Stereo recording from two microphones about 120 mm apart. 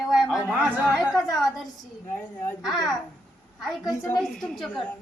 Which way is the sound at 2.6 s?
Centre (ahead or behind).